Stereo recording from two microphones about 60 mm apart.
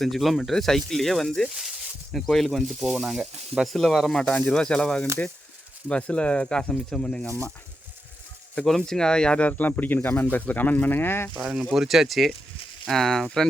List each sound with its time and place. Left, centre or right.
0.0 s speech: centre
7.3 s speech: right
8.6 s speech: centre; by 11.3 s left
11.7 s speech: centre